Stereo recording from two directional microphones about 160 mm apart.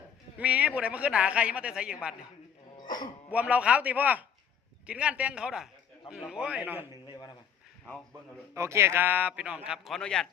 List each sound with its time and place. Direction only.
0.3 s speech: 10° right (ahead or behind)
3.3 s a man's voice: 10° right (ahead or behind)
7.1 s a sound: 25° left (ahead or behind)
8.5 s speech: 15° right (ahead or behind); by 10.2 s 5° left (ahead or behind)